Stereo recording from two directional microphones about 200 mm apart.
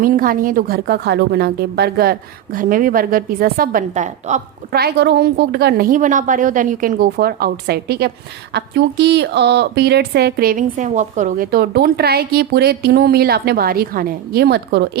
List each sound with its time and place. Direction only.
0.0 s a woman's voice: 45° right (ahead or behind)
4.7 s a woman's voice: 50° right (ahead or behind)